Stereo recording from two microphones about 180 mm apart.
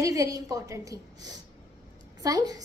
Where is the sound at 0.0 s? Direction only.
20° right (ahead or behind).